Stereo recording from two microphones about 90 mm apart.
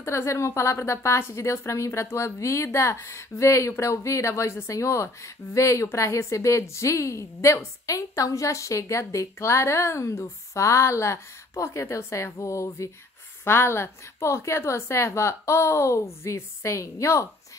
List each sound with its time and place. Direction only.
0.0 s a woman's voice: 30° left (ahead or behind)